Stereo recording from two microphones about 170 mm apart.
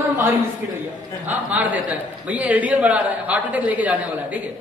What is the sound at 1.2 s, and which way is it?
A man's voice, 10° right (ahead or behind).